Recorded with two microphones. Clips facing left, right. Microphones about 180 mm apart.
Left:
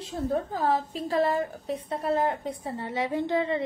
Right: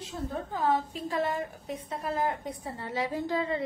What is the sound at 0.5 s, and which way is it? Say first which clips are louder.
A woman's voice: left 2 dB; 35° left (ahead or behind).